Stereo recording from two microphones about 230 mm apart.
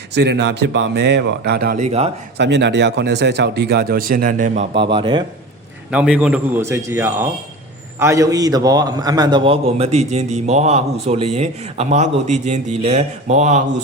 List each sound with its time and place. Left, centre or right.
0.1 s speech: right
2.4 s speech: right
4.7 s a man's voice: right
5.9 s a man's voice: centre; by 13.8 s right